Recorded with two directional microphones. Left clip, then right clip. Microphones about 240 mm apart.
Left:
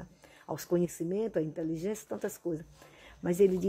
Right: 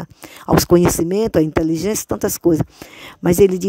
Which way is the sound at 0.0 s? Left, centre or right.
Right.